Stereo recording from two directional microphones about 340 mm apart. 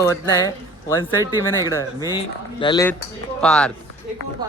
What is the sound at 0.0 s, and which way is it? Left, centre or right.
Speech, centre.